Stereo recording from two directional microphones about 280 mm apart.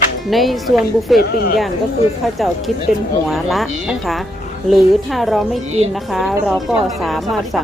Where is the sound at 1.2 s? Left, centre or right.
Left.